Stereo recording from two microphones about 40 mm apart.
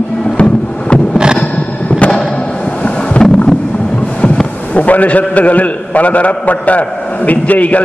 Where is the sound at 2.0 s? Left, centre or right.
Left.